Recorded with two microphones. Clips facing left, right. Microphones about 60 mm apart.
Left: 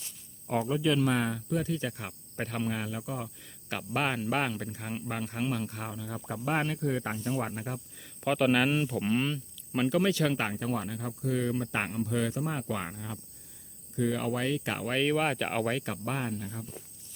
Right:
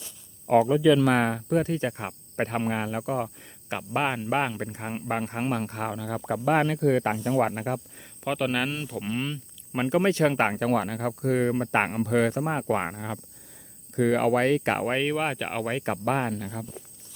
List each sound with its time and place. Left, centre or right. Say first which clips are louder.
1.0 s speech: right 6 dB; right
3.4 s speech: right 4 dB; centre
4.6 s speech: right 4 dB; right
5.9 s speech: right 8 dB; right
8.2 s speech: left 1 dB; centre
9.9 s speech: right 7 dB; right
10.6 s speech: right 8 dB; right
13.9 s speech: right 8 dB; right
14.9 s speech: right 1 dB; centre
16.0 s speech: right 9 dB; right
16.3 s speech: right 4 dB; right